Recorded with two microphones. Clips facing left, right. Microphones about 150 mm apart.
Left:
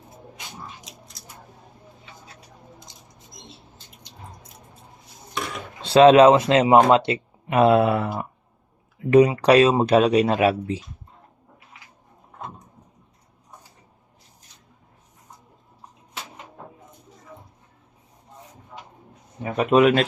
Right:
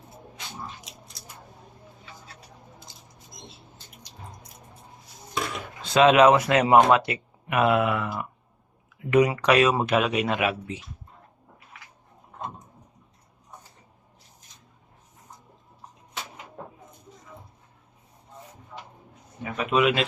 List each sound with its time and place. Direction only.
0.9 s scissors: centre (ahead or behind)
2.9 s mouse: 20° left (ahead or behind)
5.8 s speech: 30° left (ahead or behind)
18.7 s a sound: 25° left (ahead or behind)
19.4 s speech: 35° left (ahead or behind)